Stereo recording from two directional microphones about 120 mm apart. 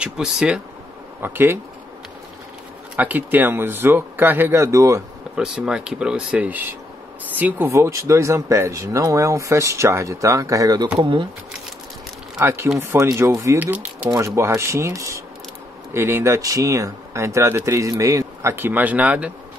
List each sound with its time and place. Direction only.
0.0 s speech: 5° right (ahead or behind)
1.2 s speech: 15° right (ahead or behind)
3.0 s speech: 15° right (ahead or behind)
5.3 s speech: 5° right (ahead or behind); by 10.9 s 30° right (ahead or behind)
12.4 s speech: 20° right (ahead or behind)